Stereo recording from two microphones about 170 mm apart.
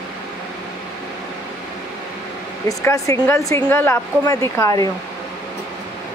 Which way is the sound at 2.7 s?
20° left (ahead or behind).